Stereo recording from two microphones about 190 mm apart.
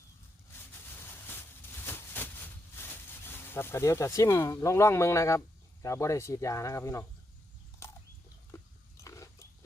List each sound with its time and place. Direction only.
0.9 s a sound: 10° left (ahead or behind)
5.8 s speech: 15° left (ahead or behind)
8.5 s livestock: 15° left (ahead or behind)
9.0 s biting: 15° left (ahead or behind)